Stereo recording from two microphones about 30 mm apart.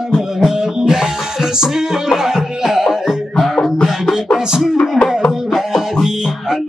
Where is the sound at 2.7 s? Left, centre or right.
Centre.